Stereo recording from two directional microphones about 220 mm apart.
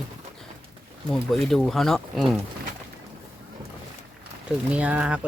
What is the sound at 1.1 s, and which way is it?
Speech, centre (ahead or behind).